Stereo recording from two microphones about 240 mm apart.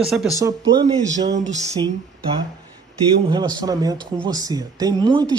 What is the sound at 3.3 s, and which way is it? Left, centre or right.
A man's voice, centre.